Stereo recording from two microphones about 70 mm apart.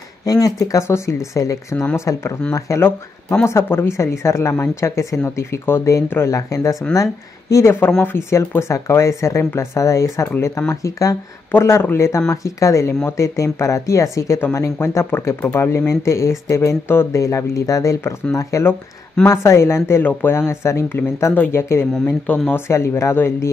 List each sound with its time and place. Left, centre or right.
0.2 s speech: left
0.8 s speech: left
2.0 s speech: left
3.4 s speech: left
8.0 s speech: left
9.4 s speech: left
9.8 s speech: left
11.5 s speech: left
12.3 s speech: left
17.2 s speech: left
20.0 s speech: left